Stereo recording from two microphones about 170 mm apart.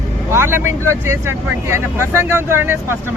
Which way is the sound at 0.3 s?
15° right (ahead or behind).